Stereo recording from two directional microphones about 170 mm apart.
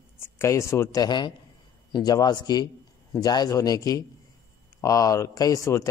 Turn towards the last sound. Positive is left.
turn(degrees=20)  # may be behind; listen again after turning